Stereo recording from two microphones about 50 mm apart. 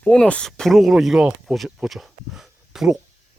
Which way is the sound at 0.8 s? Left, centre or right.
Centre.